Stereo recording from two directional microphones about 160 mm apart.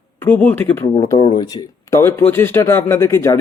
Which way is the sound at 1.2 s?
25° left (ahead or behind).